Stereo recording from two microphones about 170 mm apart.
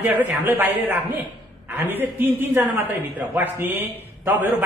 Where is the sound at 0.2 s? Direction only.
10° right (ahead or behind).